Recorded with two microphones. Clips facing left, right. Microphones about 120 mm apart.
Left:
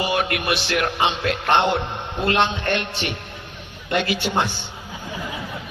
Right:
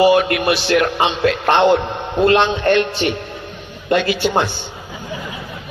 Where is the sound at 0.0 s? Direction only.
35° right (ahead or behind).